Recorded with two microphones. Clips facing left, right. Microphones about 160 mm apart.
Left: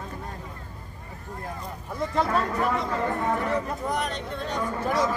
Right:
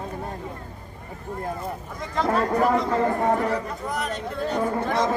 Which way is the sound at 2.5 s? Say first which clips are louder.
Right 5 dB; 40° right (ahead or behind).